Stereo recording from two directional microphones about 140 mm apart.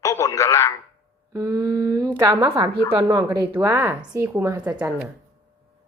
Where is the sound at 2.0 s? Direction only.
30° right (ahead or behind).